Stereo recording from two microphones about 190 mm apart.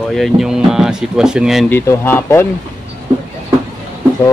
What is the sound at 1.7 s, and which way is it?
Speech, 10° left (ahead or behind).